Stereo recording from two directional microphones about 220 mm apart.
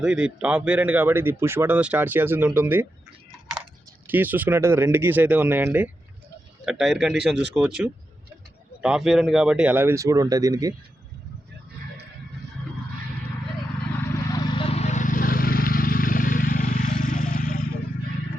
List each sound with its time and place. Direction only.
0.0 s speech: 5° right (ahead or behind)
4.0 s a man's voice: 10° right (ahead or behind)
14.1 s vehicle: 20° left (ahead or behind); by 17.6 s 35° left (ahead or behind)